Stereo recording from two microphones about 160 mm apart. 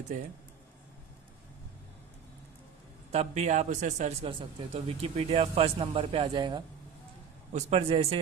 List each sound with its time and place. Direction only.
3.1 s a man's voice: 40° right (ahead or behind)
4.3 s speech: 35° right (ahead or behind)
7.5 s speech: 40° right (ahead or behind)